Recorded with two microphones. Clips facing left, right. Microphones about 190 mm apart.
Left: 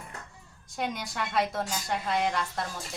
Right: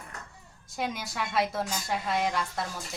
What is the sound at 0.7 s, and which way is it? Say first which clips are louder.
A woman's voice: even; centre (ahead or behind).